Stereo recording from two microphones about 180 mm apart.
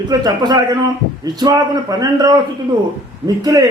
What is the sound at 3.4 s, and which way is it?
Speech, 20° right (ahead or behind).